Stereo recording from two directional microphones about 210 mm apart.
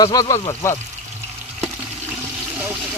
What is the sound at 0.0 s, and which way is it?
Speech, 20° left (ahead or behind).